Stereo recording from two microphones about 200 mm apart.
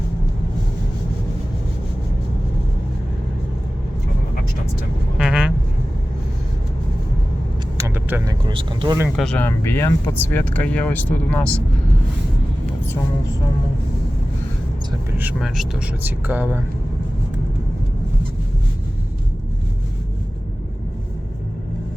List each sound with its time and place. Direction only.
5.1 s vehicle: 5° right (ahead or behind)
7.8 s speech: 10° right (ahead or behind)
9.1 s speech: 5° left (ahead or behind)
15.2 s speech: 5° right (ahead or behind)